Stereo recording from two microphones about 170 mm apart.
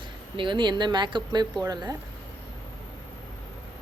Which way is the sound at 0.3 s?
30° right (ahead or behind).